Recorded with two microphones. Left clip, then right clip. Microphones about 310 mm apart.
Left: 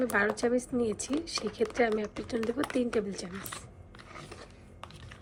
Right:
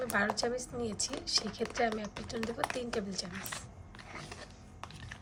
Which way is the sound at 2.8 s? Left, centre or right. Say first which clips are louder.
Left 6 dB; left.